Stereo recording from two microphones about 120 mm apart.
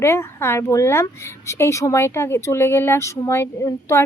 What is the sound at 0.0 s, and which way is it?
Speech, 20° left (ahead or behind).